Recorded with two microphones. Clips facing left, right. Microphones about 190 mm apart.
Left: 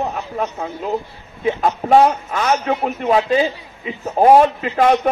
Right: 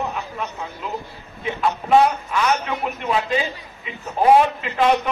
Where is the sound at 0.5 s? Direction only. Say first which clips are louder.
Left 7 dB; 35° left (ahead or behind).